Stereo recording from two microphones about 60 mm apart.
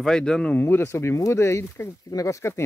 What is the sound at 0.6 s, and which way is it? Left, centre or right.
Speech, left.